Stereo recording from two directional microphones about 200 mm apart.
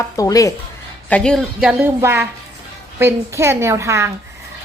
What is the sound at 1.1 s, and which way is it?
A woman's voice, 5° left (ahead or behind).